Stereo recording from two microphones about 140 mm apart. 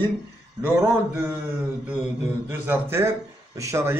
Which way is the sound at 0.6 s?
15° right (ahead or behind).